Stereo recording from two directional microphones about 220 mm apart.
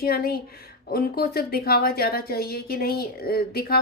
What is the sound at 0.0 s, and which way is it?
Speech, 45° left (ahead or behind).